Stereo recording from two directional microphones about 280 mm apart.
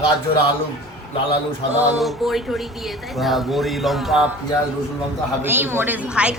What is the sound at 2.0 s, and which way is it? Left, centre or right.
Speech, centre.